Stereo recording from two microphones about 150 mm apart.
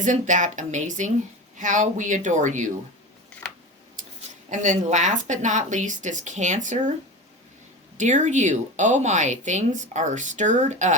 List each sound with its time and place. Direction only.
0.0 s speech: 55° right (ahead or behind)
4.4 s a woman's voice: 55° right (ahead or behind)
7.9 s a woman's voice: 55° right (ahead or behind)